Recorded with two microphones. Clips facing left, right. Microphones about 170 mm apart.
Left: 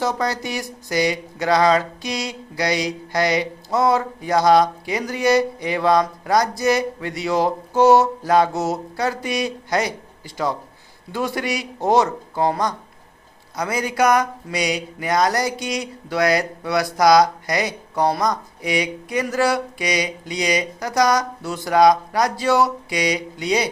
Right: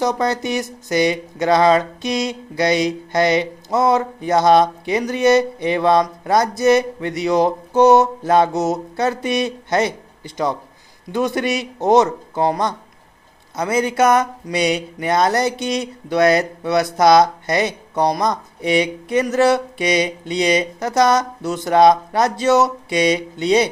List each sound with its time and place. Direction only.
0.0 s speech: 20° right (ahead or behind)